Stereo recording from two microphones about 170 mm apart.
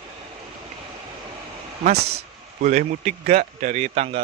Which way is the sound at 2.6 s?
45° right (ahead or behind).